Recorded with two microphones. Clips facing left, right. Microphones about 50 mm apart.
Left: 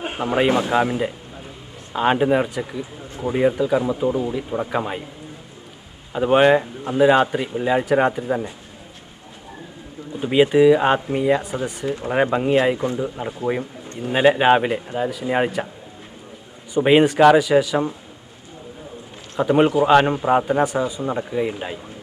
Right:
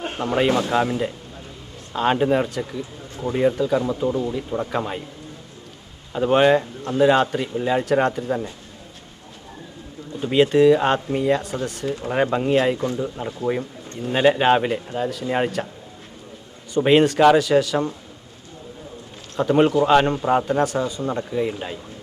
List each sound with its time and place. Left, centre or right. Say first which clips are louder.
0.0 s speech: left 1 dB; centre
6.1 s speech: left 1 dB; centre
10.2 s speech: left 1 dB; centre
11.9 s speech: left 2 dB; left
12.1 s speech: left 1 dB; centre
14.2 s speech: left 2 dB; centre
16.7 s speech: left 1 dB; centre
19.4 s speech: left 1 dB; centre